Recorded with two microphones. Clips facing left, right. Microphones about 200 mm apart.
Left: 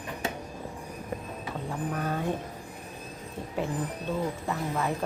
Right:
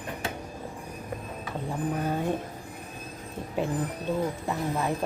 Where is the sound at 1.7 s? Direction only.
15° right (ahead or behind).